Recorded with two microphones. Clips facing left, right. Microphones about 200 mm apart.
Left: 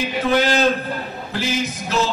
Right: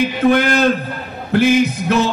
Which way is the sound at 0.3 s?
55° right (ahead or behind).